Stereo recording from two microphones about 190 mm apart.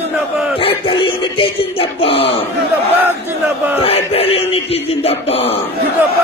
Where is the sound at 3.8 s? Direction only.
30° left (ahead or behind).